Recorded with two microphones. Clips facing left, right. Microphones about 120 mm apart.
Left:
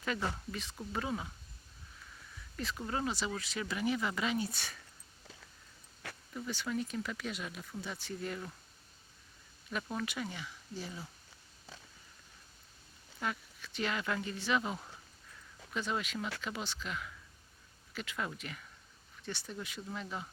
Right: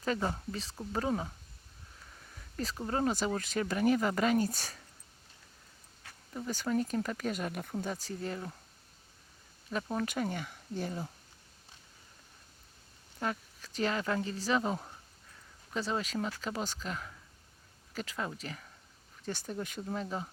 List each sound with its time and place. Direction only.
0.0 s speech: 35° right (ahead or behind)
2.3 s a sound: 40° right (ahead or behind)
2.7 s speech: 35° right (ahead or behind)
6.0 s a sound: 70° left (ahead or behind)
6.5 s speech: 40° right (ahead or behind)
9.6 s speech: 35° right (ahead or behind)
13.1 s speech: 40° right (ahead or behind)